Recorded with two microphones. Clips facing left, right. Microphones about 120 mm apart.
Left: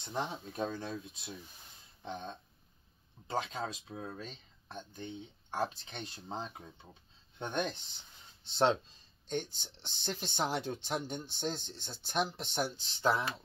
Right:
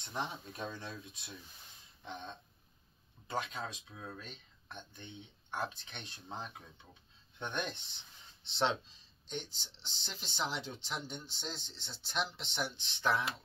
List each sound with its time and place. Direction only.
0.0 s speech: 30° left (ahead or behind)
3.3 s speech: 30° left (ahead or behind)
8.5 s speech: 50° left (ahead or behind)